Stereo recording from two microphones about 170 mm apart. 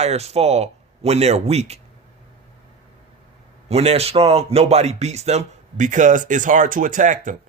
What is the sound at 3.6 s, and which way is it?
A man's voice, 40° right (ahead or behind).